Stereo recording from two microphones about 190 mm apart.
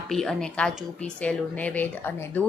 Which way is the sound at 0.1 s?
Centre (ahead or behind).